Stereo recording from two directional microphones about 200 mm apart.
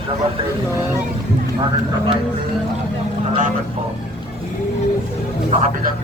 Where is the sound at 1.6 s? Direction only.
25° right (ahead or behind).